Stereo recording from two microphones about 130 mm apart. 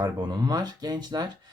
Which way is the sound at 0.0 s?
30° right (ahead or behind).